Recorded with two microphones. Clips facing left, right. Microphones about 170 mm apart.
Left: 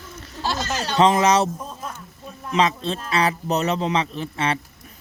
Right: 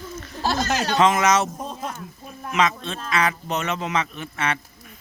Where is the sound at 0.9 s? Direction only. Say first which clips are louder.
Left 3 dB; 35° left (ahead or behind).